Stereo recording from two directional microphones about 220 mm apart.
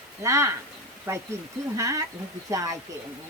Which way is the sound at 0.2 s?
15° right (ahead or behind).